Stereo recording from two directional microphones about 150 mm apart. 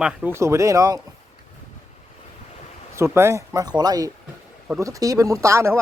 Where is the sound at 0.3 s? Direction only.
20° right (ahead or behind).